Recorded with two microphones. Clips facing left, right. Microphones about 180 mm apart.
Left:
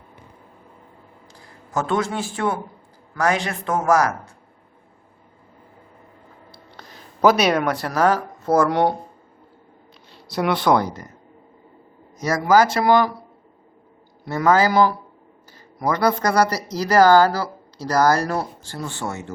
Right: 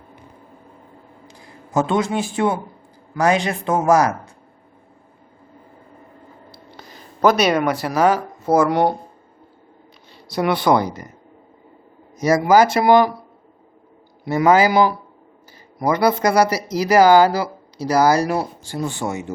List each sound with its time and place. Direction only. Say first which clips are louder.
1.3 s speech: right 4 dB; 20° right (ahead or behind)
6.7 s speech: even; centre (ahead or behind)
10.3 s speech: right 1 dB; centre (ahead or behind)
12.1 s speech: right 3 dB; 15° right (ahead or behind)
14.3 s speech: right 3 dB; 15° right (ahead or behind)